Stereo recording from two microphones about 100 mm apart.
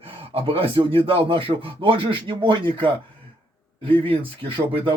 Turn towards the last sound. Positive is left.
turn(degrees=-60)  # may be behind; listen again after turning